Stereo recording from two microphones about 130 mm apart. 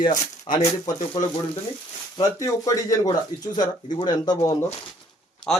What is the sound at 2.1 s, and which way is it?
Speech, 25° left (ahead or behind).